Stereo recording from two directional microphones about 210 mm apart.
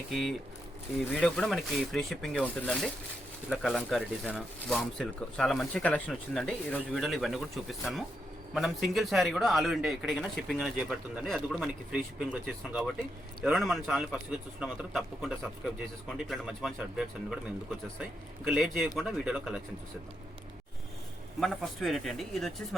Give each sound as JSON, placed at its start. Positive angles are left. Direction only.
{"t": 0.1, "sound": "speech", "side_deg": 0}
{"t": 18.4, "sound": "speech", "side_deg": 0}
{"t": 21.4, "sound": "speech", "side_deg": 0}